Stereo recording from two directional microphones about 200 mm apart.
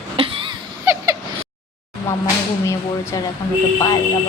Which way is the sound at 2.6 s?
15° left (ahead or behind).